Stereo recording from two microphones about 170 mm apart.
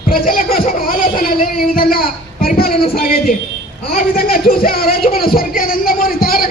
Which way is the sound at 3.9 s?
55° left (ahead or behind).